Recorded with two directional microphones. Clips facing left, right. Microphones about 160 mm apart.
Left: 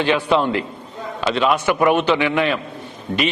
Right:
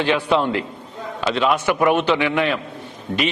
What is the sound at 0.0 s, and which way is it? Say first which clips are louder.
A man's voice: left 1 dB; 10° left (ahead or behind).